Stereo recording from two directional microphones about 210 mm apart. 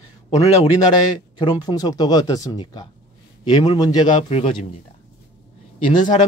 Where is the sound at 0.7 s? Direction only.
20° left (ahead or behind).